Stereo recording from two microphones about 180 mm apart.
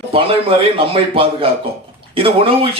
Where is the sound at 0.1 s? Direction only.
30° right (ahead or behind).